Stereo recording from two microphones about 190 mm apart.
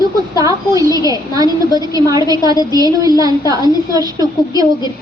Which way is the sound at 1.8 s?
20° right (ahead or behind).